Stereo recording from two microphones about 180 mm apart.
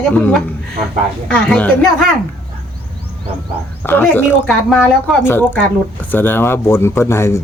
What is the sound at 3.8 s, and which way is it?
Speech, 10° left (ahead or behind).